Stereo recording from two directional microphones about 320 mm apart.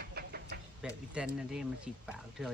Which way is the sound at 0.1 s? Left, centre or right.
Right.